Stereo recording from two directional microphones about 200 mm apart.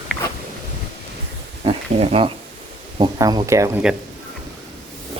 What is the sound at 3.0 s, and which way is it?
Speech, 20° right (ahead or behind).